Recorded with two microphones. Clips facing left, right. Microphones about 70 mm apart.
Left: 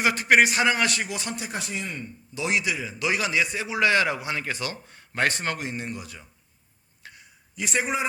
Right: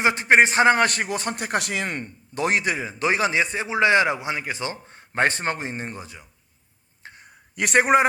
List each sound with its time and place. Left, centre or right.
0.0 s a man's voice: right
2.3 s a man's voice: right
7.2 s a sound: right